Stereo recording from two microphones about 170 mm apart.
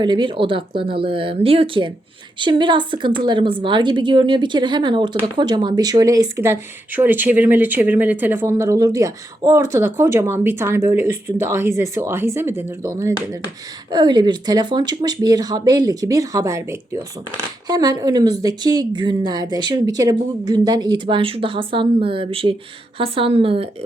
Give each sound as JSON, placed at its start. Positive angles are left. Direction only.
{"t": 0.0, "sound": "a woman's voice", "side_deg": -25}